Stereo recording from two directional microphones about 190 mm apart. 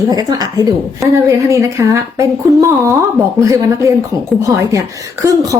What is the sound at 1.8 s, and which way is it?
A woman's voice, 15° right (ahead or behind).